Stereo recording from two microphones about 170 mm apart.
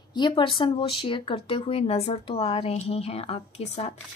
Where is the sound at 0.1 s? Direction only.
30° left (ahead or behind).